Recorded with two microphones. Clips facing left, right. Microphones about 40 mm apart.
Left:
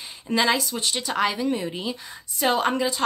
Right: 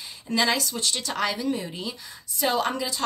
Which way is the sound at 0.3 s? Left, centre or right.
Centre.